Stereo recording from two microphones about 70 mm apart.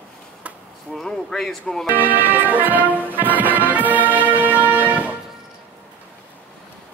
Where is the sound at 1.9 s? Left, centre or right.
Right.